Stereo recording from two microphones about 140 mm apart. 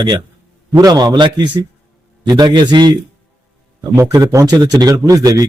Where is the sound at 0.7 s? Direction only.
30° right (ahead or behind).